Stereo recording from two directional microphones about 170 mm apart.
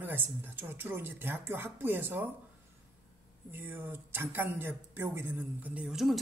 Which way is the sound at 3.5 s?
10° right (ahead or behind).